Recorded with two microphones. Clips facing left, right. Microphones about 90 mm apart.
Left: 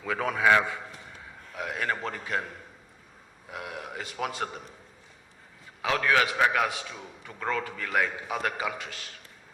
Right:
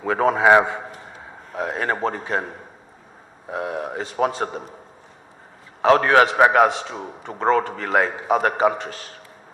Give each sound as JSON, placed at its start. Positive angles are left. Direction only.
{"t": 0.0, "sound": "a man's voice", "side_deg": -40}
{"t": 0.9, "sound": "a sound", "side_deg": -45}
{"t": 3.5, "sound": "a man's voice", "side_deg": -35}
{"t": 5.8, "sound": "a man's voice", "side_deg": -45}